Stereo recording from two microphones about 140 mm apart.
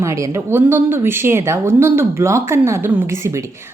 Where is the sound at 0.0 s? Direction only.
20° right (ahead or behind).